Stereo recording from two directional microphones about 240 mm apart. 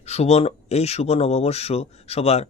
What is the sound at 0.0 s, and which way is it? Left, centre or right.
Speech, left.